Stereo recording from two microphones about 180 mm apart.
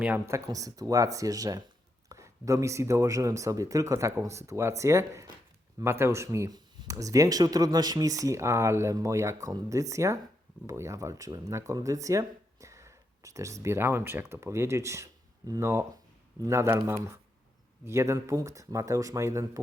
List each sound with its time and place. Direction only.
0.0 s speech: 10° right (ahead or behind)